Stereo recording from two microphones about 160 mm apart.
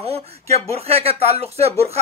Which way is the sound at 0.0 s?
40° right (ahead or behind).